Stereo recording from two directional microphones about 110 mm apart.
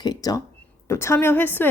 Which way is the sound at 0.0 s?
35° left (ahead or behind).